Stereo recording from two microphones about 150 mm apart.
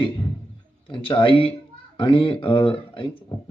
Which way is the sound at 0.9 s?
35° left (ahead or behind).